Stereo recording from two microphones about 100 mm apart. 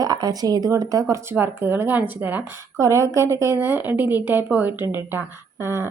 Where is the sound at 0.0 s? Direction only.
40° right (ahead or behind); by 2.6 s 20° right (ahead or behind).